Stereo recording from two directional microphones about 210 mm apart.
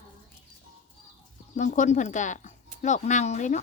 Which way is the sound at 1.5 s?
35° left (ahead or behind).